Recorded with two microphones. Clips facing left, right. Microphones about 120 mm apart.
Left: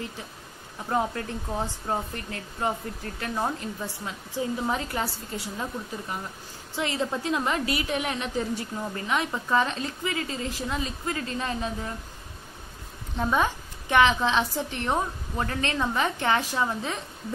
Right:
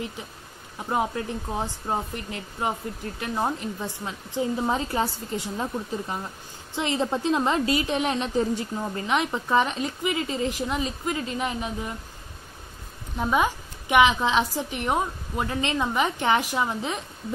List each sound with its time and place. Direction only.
0.8 s a woman's voice: 15° right (ahead or behind)
13.2 s a woman's voice: 10° right (ahead or behind)